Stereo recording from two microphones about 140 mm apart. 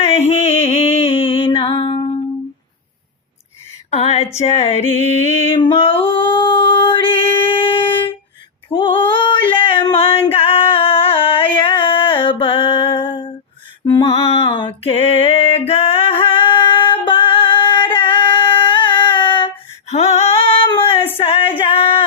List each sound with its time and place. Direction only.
0.0 s music: 50° left (ahead or behind)
3.9 s a sound: 50° left (ahead or behind)
4.4 s music: 50° left (ahead or behind)
5.5 s singing: 40° left (ahead or behind)
8.7 s female singing: 35° left (ahead or behind)
13.8 s music: 35° left (ahead or behind)
19.9 s female singing: 50° left (ahead or behind)
21.6 s singing: 40° left (ahead or behind)